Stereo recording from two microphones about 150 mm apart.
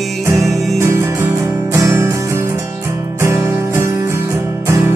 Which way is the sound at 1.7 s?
20° right (ahead or behind).